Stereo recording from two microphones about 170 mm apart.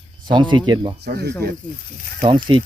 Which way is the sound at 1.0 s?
70° right (ahead or behind).